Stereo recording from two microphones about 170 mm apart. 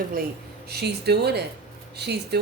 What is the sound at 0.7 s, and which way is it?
Speech, 75° right (ahead or behind).